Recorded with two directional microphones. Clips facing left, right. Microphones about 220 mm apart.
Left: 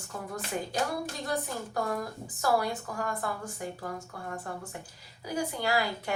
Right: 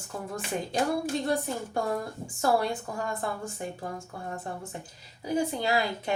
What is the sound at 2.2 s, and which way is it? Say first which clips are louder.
A woman's voice: right 2 dB; 25° right (ahead or behind).